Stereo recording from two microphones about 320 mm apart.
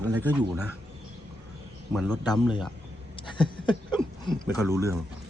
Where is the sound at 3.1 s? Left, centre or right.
Centre.